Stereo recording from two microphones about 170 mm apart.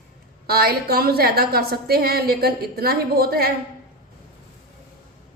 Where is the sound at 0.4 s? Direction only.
65° right (ahead or behind).